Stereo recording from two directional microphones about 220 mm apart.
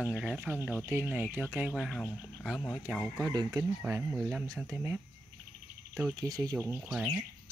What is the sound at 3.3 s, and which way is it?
Speech, 20° right (ahead or behind).